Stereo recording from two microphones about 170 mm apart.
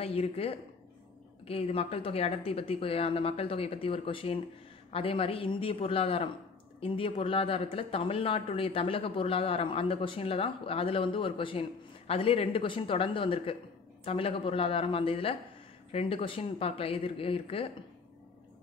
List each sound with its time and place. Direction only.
0.0 s speech: 35° left (ahead or behind)